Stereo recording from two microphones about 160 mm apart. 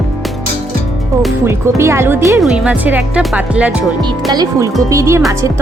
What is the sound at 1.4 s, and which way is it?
Speech, 15° right (ahead or behind).